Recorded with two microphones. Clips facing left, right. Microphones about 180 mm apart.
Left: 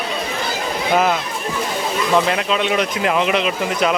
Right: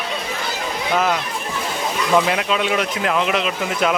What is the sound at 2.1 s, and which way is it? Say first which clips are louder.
A man's voice: even; centre (ahead or behind).